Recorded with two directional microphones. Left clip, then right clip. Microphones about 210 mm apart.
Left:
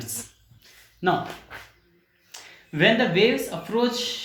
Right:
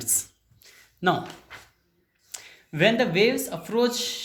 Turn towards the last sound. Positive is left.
turn(degrees=-50)  # may be behind; listen again after turning